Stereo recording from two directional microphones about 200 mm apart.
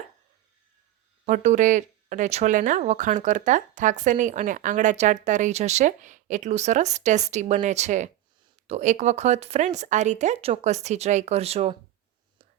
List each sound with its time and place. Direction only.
1.2 s speech: 35° right (ahead or behind)